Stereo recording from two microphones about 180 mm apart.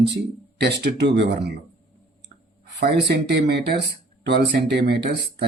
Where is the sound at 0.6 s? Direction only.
65° right (ahead or behind).